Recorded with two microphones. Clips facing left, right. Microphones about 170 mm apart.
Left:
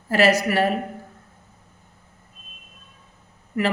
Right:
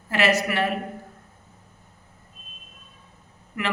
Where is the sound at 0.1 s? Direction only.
35° left (ahead or behind).